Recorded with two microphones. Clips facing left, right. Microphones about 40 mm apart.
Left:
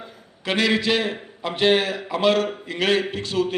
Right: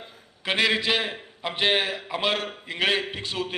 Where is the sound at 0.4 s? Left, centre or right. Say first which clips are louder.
Left 2 dB; centre.